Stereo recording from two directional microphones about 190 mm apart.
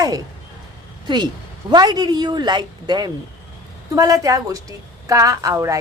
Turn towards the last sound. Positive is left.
turn(degrees=-15)  # may be behind; listen again after turning